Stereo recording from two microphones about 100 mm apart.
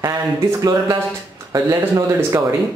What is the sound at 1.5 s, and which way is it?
Speech, 35° right (ahead or behind).